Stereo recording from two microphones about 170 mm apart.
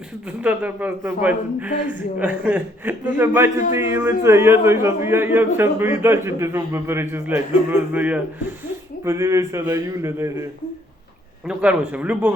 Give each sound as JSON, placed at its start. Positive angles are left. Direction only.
{"t": 0.3, "sound": "a man's voice", "side_deg": -10}
{"t": 11.4, "sound": "a man's voice", "side_deg": -5}